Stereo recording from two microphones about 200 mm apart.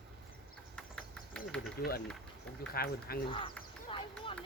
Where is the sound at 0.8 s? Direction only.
5° left (ahead or behind).